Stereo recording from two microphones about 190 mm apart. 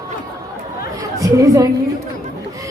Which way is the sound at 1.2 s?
15° right (ahead or behind).